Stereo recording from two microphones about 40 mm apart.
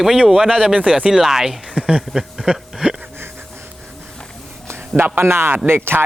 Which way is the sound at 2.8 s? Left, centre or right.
Right.